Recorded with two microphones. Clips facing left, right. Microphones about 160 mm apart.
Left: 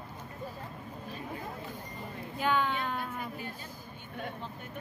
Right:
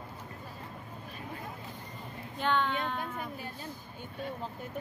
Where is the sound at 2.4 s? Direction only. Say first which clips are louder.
Even; 5° left (ahead or behind).